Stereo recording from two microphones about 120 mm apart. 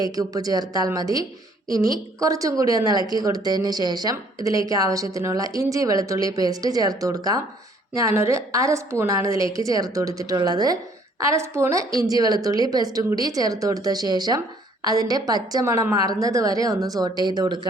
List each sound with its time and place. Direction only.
0.0 s a woman's voice: 30° right (ahead or behind)